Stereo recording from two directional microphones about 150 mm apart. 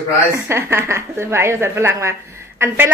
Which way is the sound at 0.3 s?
20° right (ahead or behind).